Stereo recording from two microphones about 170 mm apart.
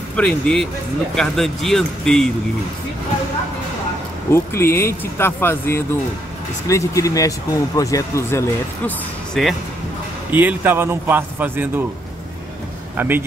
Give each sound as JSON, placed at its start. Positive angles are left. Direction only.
{"t": 0.1, "sound": "speech", "side_deg": 5}
{"t": 4.3, "sound": "speech", "side_deg": 15}
{"t": 9.3, "sound": "speech", "side_deg": 0}
{"t": 10.3, "sound": "a man's voice", "side_deg": -10}
{"t": 12.9, "sound": "a man's voice", "side_deg": -10}